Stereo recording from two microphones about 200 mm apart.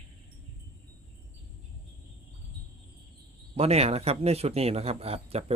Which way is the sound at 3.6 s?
30° right (ahead or behind).